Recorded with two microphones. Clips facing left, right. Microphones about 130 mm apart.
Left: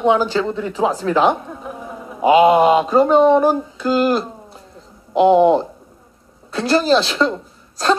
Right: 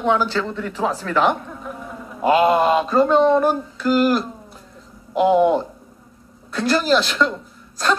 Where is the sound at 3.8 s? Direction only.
25° left (ahead or behind).